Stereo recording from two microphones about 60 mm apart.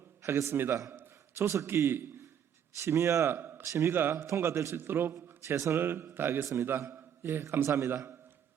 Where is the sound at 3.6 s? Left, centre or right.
Right.